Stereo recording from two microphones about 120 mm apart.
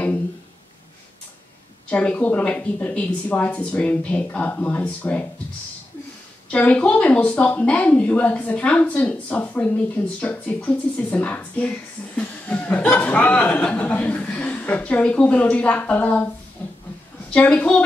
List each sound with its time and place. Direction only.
1.9 s speech: 10° left (ahead or behind)
6.5 s speech: 10° left (ahead or behind)
17.3 s speech: 10° left (ahead or behind)